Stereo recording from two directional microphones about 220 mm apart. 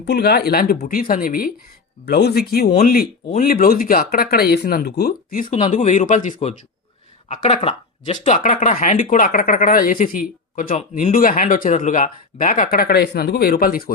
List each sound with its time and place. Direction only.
0.0 s speech: 50° left (ahead or behind)